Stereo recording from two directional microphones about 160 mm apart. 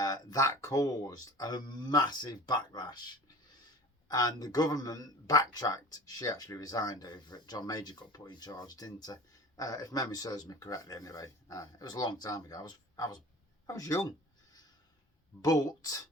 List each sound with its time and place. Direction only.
0.0 s speech: 20° left (ahead or behind)
15.4 s speech: 25° left (ahead or behind)